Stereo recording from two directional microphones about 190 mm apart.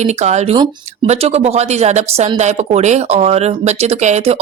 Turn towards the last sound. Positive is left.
turn(degrees=-35)  # may be behind; listen again after turning